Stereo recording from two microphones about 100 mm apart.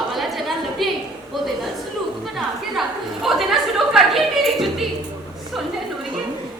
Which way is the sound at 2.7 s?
Centre (ahead or behind).